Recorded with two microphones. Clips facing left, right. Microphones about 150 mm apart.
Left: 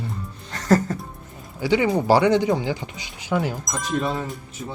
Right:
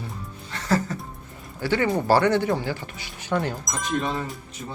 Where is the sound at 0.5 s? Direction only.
45° left (ahead or behind).